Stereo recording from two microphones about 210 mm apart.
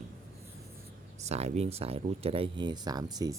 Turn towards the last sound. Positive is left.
turn(degrees=-20)  # may be behind; listen again after turning